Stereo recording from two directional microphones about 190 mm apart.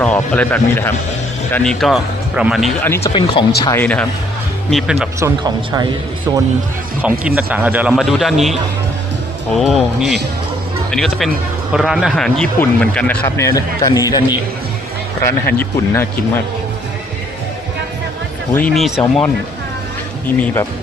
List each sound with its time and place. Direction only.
0.0 s a man's voice: 5° left (ahead or behind)
2.8 s speech: 10° left (ahead or behind)
3.1 s speech: 30° left (ahead or behind)
3.6 s speech: 15° left (ahead or behind)
4.7 s a man's voice: centre (ahead or behind)
5.2 s speech: 20° right (ahead or behind)
7.0 s a man's voice: 5° right (ahead or behind)
9.6 s a man's voice: centre (ahead or behind)
18.5 s a man's voice: 5° left (ahead or behind)
20.4 s speech: 15° left (ahead or behind)